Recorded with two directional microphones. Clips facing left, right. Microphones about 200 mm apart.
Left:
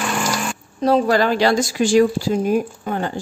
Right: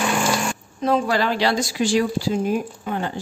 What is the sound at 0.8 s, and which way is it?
A woman's voice, 40° left (ahead or behind).